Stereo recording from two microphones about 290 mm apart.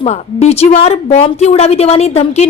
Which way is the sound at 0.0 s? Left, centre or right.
Left.